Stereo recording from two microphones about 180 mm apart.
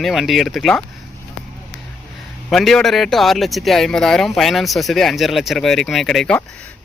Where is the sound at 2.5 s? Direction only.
Centre (ahead or behind).